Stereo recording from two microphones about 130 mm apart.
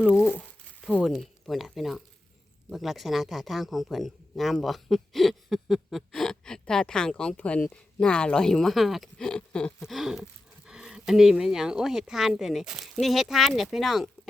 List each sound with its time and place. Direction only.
0.1 s speech: 15° left (ahead or behind)
1.0 s speech: centre (ahead or behind)